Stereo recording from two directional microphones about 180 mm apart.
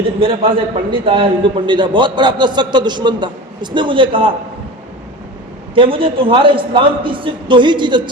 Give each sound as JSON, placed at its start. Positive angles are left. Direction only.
{"t": 0.2, "sound": "a man's voice", "side_deg": -30}
{"t": 5.7, "sound": "a man's voice", "side_deg": -30}